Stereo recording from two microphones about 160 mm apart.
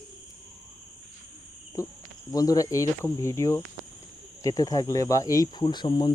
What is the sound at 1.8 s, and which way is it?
Speech, 20° left (ahead or behind).